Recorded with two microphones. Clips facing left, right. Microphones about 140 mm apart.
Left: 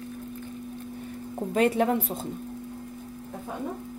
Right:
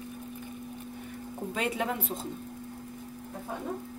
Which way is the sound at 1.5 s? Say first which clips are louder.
Left 9 dB; 45° left (ahead or behind).